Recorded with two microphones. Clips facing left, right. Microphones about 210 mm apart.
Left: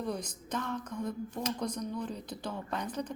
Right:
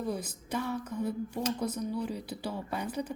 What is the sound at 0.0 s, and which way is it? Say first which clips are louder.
A woman's voice: right 1 dB; 5° right (ahead or behind).